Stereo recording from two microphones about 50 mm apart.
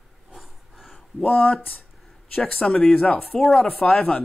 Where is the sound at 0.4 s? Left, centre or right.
Centre.